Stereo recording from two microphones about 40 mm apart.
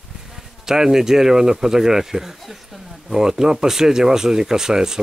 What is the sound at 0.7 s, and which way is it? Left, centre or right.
Speech, centre.